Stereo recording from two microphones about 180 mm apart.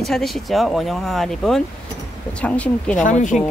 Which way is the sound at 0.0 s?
Centre (ahead or behind).